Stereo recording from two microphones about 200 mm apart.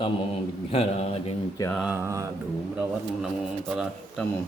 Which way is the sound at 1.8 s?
5° right (ahead or behind).